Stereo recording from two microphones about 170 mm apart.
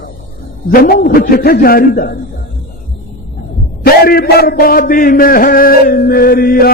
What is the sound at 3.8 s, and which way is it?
A man's voice, 65° left (ahead or behind).